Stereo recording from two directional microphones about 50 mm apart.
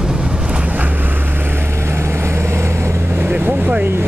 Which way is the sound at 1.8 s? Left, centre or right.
Right.